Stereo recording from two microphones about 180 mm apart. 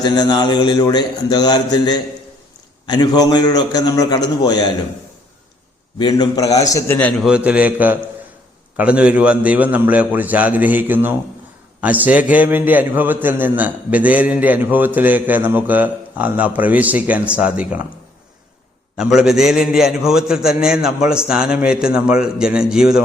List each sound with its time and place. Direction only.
0.0 s a man's voice: 25° left (ahead or behind)
6.0 s a man's voice: 20° left (ahead or behind)
7.1 s a man's voice: 5° right (ahead or behind)
18.9 s a man's voice: 5° right (ahead or behind)